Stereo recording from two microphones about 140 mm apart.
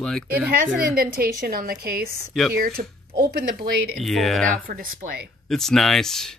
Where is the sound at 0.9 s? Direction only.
90° right.